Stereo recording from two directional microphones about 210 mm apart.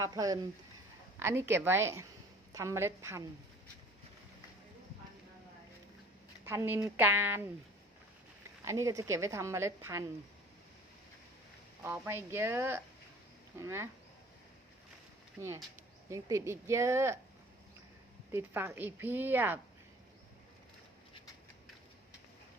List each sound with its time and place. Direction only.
0.0 s a woman's voice: 15° right (ahead or behind)
6.4 s a woman's voice: 10° right (ahead or behind)
8.6 s a woman's voice: 15° right (ahead or behind)
11.8 s a woman's voice: 10° right (ahead or behind)
15.4 s a woman's voice: 15° right (ahead or behind)
18.3 s a woman's voice: 10° right (ahead or behind)